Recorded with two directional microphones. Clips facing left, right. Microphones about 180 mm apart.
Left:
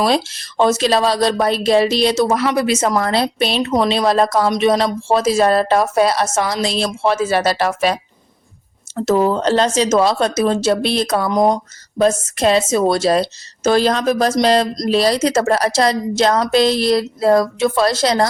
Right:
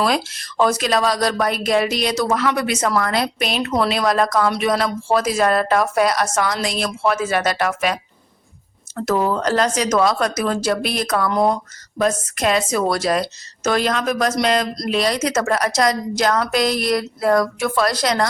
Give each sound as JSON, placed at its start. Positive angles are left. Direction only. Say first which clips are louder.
{"t": 0.0, "sound": "a woman's voice", "louder": "left 3 dB", "side_deg": 30}
{"t": 2.6, "sound": "a woman's voice", "louder": "left 3 dB", "side_deg": 25}
{"t": 3.6, "sound": "a woman's voice", "louder": "left 3 dB", "side_deg": 20}
{"t": 9.0, "sound": "a woman's voice", "louder": "left 4 dB", "side_deg": 25}
{"t": 11.9, "sound": "a woman's voice", "louder": "left 4 dB", "side_deg": 25}